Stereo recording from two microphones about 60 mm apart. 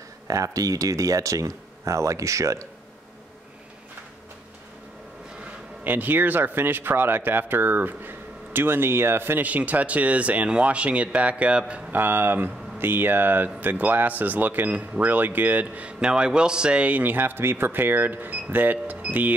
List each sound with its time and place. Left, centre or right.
0.3 s speech: right
5.9 s speech: right
11.9 s speech: right